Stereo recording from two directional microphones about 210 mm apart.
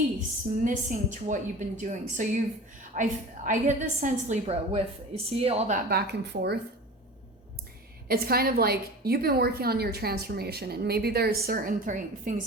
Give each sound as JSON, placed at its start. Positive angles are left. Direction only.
{"t": 0.6, "sound": "a woman's voice", "side_deg": -35}
{"t": 5.9, "sound": "a woman's voice", "side_deg": -50}
{"t": 8.0, "sound": "a woman's voice", "side_deg": -45}